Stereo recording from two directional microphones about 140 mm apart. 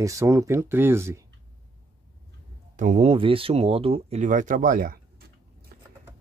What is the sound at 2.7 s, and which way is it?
Speech, 65° right (ahead or behind).